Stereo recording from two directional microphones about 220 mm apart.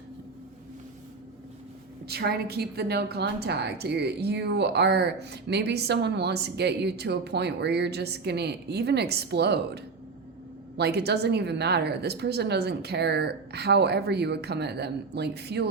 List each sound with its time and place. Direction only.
2.0 s a woman's voice: 45° right (ahead or behind)